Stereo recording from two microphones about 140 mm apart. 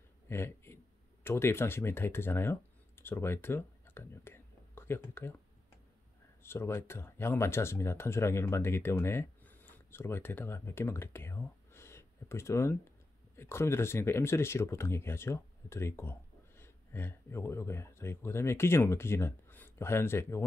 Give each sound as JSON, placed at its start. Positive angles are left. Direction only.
{"t": 0.3, "sound": "speech", "side_deg": 20}
{"t": 6.4, "sound": "speech", "side_deg": 20}